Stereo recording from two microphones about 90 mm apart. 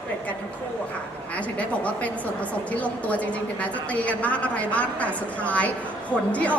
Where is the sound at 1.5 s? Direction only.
15° left (ahead or behind).